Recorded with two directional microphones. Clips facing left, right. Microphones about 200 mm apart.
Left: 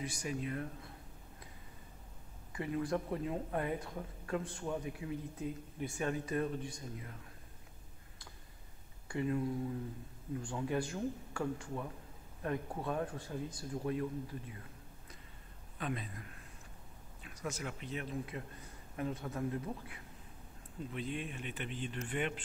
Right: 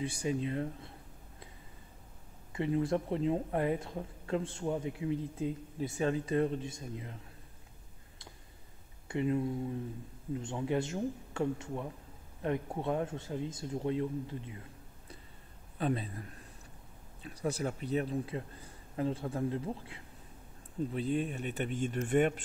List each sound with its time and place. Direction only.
0.0 s speech: 30° right (ahead or behind)
2.5 s speech: 25° right (ahead or behind)
9.0 s speech: 20° right (ahead or behind)
15.8 s speech: 30° right (ahead or behind)